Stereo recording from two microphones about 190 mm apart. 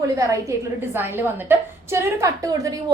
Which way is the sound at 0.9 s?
10° right (ahead or behind).